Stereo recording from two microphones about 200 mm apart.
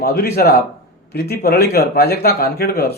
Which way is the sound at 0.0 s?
50° left (ahead or behind).